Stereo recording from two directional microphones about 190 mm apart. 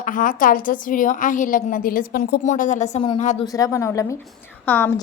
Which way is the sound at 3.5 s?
15° left (ahead or behind).